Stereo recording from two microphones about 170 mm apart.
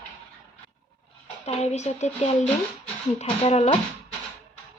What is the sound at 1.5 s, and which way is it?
Speech, 40° left (ahead or behind).